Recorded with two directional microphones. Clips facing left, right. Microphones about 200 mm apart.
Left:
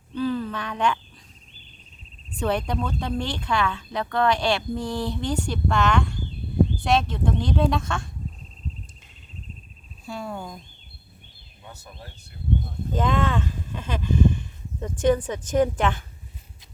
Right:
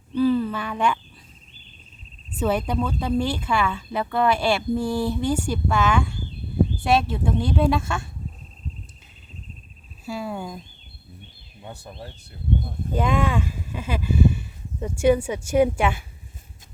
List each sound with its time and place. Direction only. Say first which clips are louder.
0.1 s a sound: right 6 dB; 10° right (ahead or behind)
2.4 s speech: right 2 dB; 5° right (ahead or behind)
10.1 s speech: right 3 dB; 5° right (ahead or behind)
11.6 s speech: right 6 dB; 30° right (ahead or behind)
12.9 s speech: right 1 dB; 10° right (ahead or behind)